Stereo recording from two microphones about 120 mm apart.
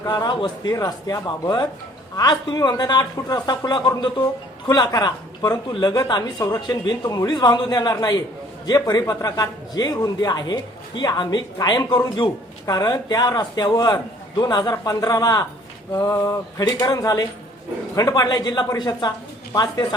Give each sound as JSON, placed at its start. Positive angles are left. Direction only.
{"t": 0.0, "sound": "a man's voice", "side_deg": 35}